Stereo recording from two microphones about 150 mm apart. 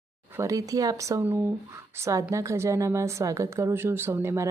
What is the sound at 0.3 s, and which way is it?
Speech, 20° right (ahead or behind).